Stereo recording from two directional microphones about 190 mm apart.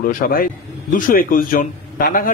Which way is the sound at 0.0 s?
45° left (ahead or behind).